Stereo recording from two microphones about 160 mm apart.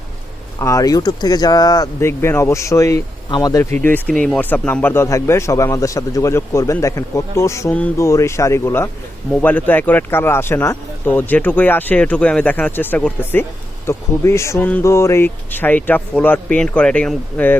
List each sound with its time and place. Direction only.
0.6 s speech: 20° left (ahead or behind)